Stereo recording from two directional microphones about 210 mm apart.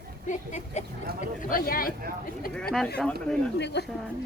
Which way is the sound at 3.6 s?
55° left (ahead or behind).